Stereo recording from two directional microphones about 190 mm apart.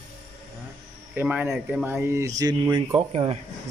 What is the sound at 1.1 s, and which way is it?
Speech, 10° right (ahead or behind).